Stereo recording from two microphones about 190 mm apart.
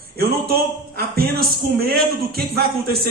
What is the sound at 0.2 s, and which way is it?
A man's voice, 55° right (ahead or behind).